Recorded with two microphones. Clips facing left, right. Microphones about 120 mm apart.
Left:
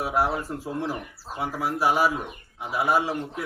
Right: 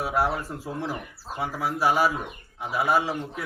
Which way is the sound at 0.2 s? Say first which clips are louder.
Left 1 dB; 10° left (ahead or behind).